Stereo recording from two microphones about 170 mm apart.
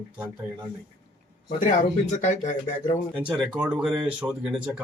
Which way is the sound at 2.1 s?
45° left (ahead or behind).